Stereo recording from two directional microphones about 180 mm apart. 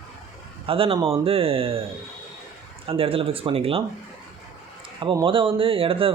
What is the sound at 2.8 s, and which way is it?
Speech, 30° right (ahead or behind).